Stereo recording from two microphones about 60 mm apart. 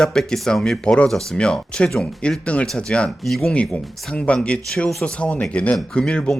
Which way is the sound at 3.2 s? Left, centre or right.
Centre.